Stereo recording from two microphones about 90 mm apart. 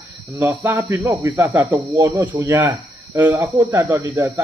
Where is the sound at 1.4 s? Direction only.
35° right (ahead or behind).